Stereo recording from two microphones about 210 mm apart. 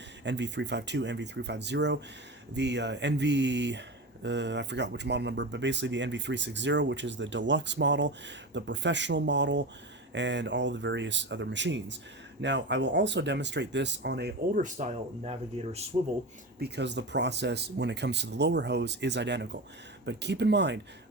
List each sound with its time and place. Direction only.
0.3 s speech: 55° right (ahead or behind)
14.6 s speech: 35° right (ahead or behind)
16.6 s speech: 50° right (ahead or behind)